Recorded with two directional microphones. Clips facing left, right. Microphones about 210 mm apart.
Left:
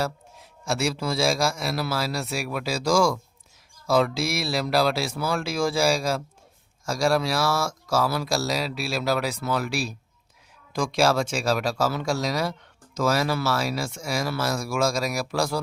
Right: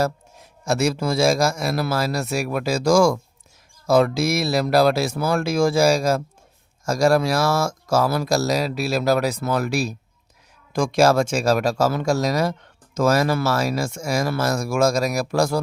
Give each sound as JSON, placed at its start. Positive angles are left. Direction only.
{"t": 0.0, "sound": "speech", "side_deg": -45}